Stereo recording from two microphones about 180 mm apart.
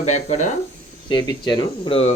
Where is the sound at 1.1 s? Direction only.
25° left (ahead or behind).